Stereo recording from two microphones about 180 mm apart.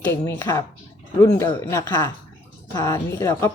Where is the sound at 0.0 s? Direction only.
15° left (ahead or behind).